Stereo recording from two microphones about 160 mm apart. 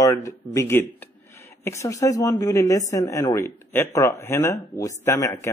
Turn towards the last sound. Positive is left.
turn(degrees=20)  # may be behind; listen again after turning